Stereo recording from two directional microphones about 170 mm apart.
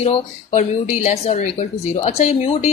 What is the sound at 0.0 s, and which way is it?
Speech, 40° left (ahead or behind).